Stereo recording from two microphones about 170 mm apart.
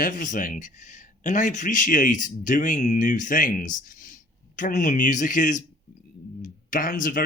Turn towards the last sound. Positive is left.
turn(degrees=55)  # may be behind; listen again after turning